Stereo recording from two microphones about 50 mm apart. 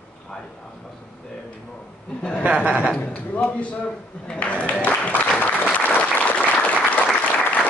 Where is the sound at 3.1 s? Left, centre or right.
Left.